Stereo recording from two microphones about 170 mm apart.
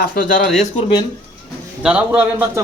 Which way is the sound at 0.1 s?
55° left (ahead or behind).